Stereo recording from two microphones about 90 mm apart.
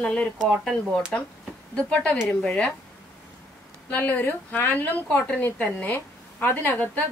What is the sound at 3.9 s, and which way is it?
A woman's voice, 20° left (ahead or behind).